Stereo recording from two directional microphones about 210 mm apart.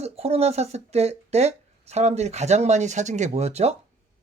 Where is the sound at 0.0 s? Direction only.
30° right (ahead or behind).